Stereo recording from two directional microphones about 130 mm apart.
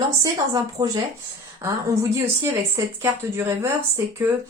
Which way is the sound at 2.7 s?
20° right (ahead or behind).